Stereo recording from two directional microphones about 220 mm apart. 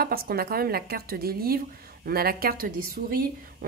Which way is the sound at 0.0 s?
45° right (ahead or behind).